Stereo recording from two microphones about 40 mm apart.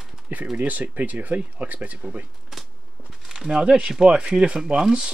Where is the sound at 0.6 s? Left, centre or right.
Right.